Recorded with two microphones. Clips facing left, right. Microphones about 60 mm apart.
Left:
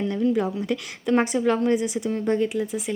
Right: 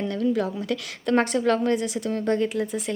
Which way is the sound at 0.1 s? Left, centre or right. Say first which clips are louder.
Left 1 dB; left.